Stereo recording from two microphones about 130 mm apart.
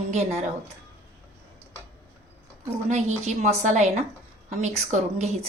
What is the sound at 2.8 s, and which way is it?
A woman's voice, 60° right (ahead or behind).